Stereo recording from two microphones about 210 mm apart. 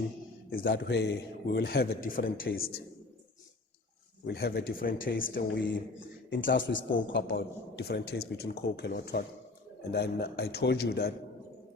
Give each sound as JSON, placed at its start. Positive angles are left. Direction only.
{"t": 0.5, "sound": "a man's voice", "side_deg": 50}
{"t": 4.3, "sound": "a man's voice", "side_deg": 50}
{"t": 6.3, "sound": "a man's voice", "side_deg": 60}